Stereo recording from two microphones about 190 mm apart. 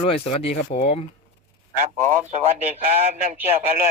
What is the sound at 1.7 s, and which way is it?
Speech, 40° right (ahead or behind).